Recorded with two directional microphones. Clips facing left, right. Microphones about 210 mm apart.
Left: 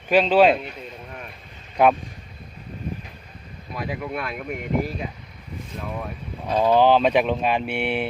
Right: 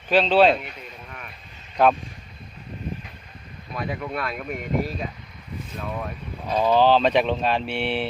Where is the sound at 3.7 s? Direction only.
5° left (ahead or behind).